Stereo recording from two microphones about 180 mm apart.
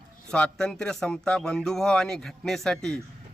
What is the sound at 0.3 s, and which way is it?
Speech, 5° left (ahead or behind).